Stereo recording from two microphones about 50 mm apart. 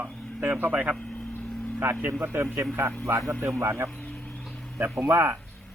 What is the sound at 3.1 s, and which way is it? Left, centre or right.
Speech, right.